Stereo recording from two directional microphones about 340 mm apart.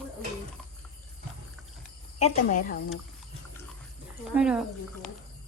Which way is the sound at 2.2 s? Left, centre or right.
Left.